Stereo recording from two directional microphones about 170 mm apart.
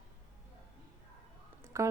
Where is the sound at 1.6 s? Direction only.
15° right (ahead or behind).